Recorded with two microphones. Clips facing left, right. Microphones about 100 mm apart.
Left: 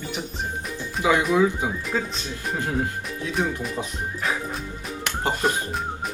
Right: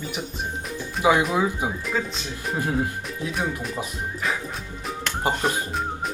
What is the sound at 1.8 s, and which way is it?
Speech, centre (ahead or behind).